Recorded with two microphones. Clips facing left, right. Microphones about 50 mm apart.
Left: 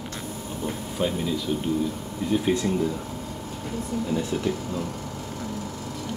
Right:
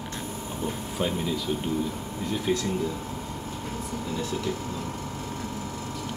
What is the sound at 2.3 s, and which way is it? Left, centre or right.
Speech, centre.